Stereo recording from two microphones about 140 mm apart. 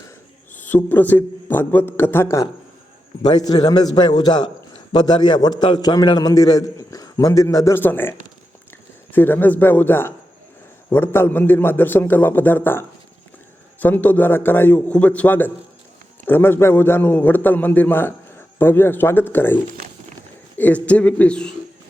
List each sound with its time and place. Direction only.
0.5 s a man's voice: 15° left (ahead or behind)
9.1 s a man's voice: 15° left (ahead or behind)
20.6 s a man's voice: 10° left (ahead or behind)